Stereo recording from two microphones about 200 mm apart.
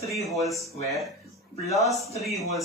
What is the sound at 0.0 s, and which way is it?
Speech, centre (ahead or behind).